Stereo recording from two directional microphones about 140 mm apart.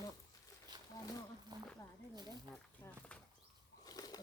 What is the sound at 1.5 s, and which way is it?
Speech, 30° right (ahead or behind).